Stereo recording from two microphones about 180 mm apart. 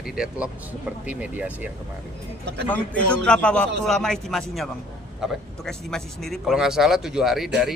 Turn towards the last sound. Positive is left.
turn(degrees=-5)  # may be behind; listen again after turning